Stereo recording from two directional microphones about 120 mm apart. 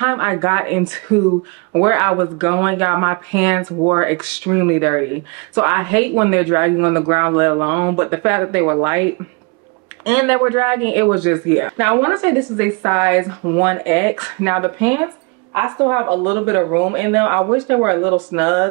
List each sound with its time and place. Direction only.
0.0 s speech: 25° right (ahead or behind)